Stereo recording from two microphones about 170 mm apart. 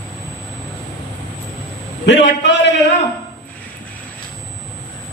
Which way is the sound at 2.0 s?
90° left.